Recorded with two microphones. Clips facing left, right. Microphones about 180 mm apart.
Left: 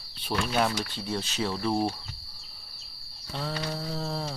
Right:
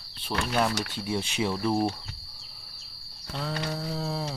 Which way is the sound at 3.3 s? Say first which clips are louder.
Right 1 dB; centre (ahead or behind).